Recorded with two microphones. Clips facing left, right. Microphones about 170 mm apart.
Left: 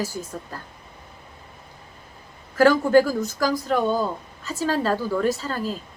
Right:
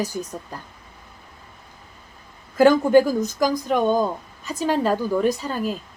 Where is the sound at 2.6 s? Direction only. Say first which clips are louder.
Right 2 dB; 20° right (ahead or behind).